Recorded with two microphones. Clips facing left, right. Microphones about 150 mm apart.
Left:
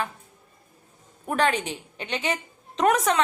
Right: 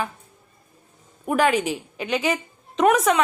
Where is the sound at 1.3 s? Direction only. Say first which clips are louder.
Right 4 dB; 10° right (ahead or behind).